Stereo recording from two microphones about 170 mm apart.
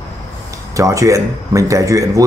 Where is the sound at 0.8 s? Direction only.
20° right (ahead or behind).